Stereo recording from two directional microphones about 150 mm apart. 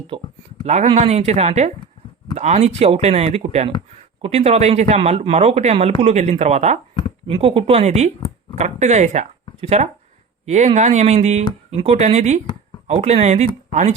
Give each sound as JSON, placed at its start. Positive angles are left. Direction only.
{"t": 0.1, "sound": "speech", "side_deg": -30}
{"t": 0.6, "sound": "speech", "side_deg": -45}
{"t": 7.3, "sound": "speech", "side_deg": -35}